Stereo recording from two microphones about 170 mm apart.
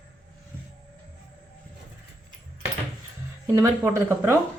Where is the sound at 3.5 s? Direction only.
15° right (ahead or behind).